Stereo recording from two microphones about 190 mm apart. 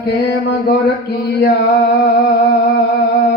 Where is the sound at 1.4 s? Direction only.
55° left (ahead or behind).